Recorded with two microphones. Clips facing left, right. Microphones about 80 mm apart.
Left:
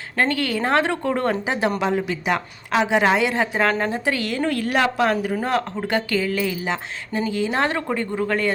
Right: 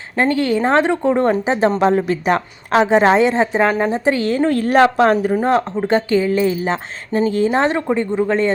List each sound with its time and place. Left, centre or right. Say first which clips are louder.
0.2 s speech: right 6 dB; right
1.8 s a woman's voice: right 7 dB; right
5.1 s speech: right 6 dB; right
7.5 s speech: right 6 dB; right